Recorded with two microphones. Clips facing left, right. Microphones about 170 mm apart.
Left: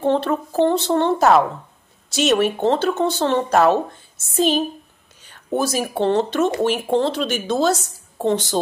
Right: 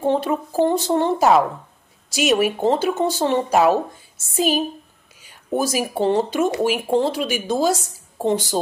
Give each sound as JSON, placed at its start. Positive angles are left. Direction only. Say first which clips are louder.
{"t": 0.0, "sound": "speech", "louder": "left 1 dB", "side_deg": -15}